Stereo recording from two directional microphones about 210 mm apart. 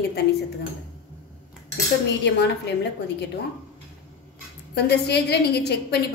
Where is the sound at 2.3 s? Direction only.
55° left (ahead or behind).